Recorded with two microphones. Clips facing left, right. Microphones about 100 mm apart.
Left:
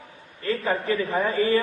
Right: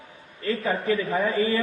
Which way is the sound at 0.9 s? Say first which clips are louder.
Even; 35° left (ahead or behind).